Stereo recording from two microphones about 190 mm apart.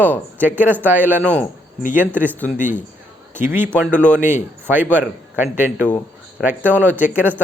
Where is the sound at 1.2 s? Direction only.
5° left (ahead or behind).